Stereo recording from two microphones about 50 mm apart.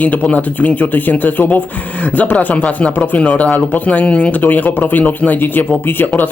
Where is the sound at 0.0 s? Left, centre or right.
Left.